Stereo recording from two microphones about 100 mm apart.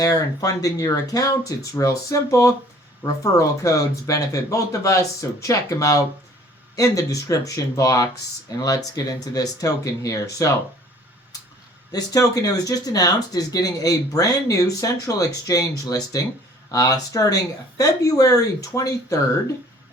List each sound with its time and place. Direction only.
0.0 s speech: 40° left (ahead or behind)
11.9 s speech: 40° left (ahead or behind)